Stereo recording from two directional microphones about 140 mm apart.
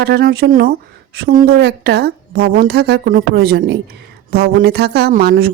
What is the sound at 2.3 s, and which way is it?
Speech, 90° right.